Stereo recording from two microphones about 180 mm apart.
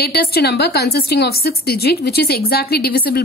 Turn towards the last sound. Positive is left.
turn(degrees=60)  # may be behind; listen again after turning